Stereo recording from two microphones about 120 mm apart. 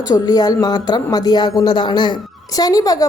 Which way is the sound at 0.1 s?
35° left (ahead or behind).